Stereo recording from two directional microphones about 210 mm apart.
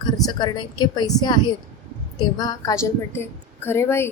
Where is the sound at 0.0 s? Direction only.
20° left (ahead or behind).